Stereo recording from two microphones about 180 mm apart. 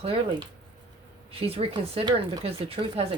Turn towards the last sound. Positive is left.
turn(degrees=-30)  # may be behind; listen again after turning